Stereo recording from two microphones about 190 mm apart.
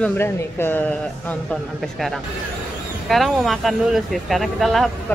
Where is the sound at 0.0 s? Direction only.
10° left (ahead or behind).